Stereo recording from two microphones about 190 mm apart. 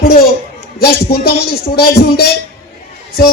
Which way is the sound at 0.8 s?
55° left (ahead or behind).